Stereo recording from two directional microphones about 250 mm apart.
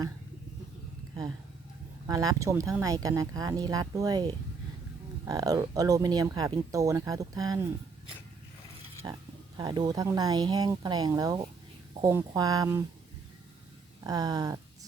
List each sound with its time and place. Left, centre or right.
2.0 s speech: centre
9.0 s speech: centre
14.0 s speech: centre